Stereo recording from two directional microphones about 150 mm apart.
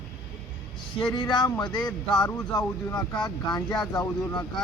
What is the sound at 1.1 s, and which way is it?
Speech, 30° left (ahead or behind).